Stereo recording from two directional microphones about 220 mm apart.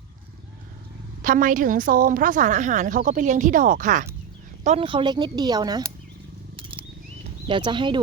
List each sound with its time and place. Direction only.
1.2 s a woman's voice: 40° right (ahead or behind); by 5.9 s 20° right (ahead or behind)
6.6 s a sound: 25° right (ahead or behind)
7.4 s speech: 20° right (ahead or behind)